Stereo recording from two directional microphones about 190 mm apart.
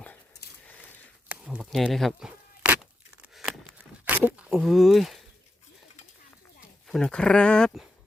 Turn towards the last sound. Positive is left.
turn(degrees=5)  # may be behind; listen again after turning